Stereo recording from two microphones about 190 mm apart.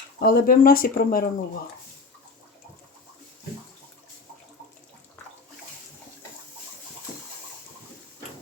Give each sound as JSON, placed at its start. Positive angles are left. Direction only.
{"t": 0.2, "sound": "speech", "side_deg": 50}